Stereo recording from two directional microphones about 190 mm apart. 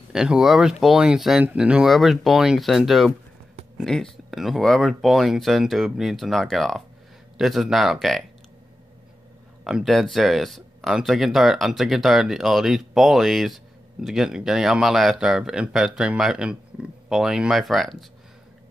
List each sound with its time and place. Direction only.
0.1 s speech: 5° right (ahead or behind)
9.7 s speech: centre (ahead or behind)